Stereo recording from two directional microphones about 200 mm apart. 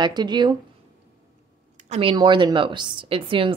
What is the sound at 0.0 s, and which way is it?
Speech, 20° right (ahead or behind).